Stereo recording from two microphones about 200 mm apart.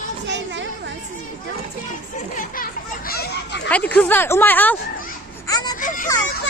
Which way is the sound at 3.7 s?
5° left (ahead or behind).